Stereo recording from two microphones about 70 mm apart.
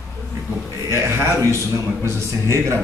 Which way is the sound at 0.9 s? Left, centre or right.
Right.